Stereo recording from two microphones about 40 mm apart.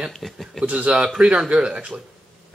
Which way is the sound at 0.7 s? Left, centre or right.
Right.